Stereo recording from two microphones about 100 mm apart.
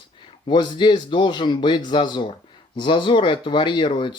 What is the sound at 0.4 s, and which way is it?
Speech, 50° left (ahead or behind).